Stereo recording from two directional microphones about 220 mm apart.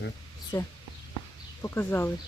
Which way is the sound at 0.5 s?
15° left (ahead or behind).